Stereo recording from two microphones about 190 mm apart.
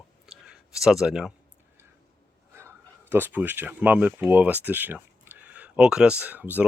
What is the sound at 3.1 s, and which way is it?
Speech, 10° right (ahead or behind).